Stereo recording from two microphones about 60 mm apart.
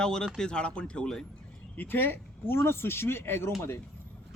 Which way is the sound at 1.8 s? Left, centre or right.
Left.